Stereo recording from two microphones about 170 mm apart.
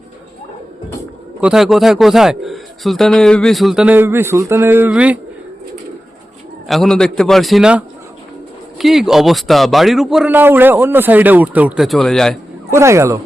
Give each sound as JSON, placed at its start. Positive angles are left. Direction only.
{"t": 1.4, "sound": "a man's voice", "side_deg": -5}
{"t": 6.7, "sound": "a man's voice", "side_deg": 0}
{"t": 12.7, "sound": "speech", "side_deg": -15}